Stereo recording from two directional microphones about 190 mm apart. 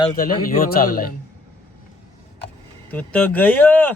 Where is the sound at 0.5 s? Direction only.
50° left (ahead or behind).